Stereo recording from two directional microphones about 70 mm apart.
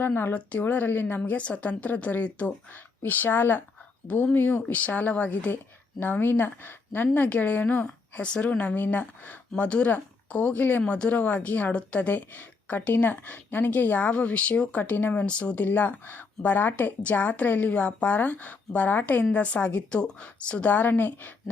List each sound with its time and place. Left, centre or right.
0.0 s speech: left